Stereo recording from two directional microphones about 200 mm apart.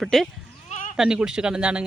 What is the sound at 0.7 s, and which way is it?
Bleat, 40° left (ahead or behind).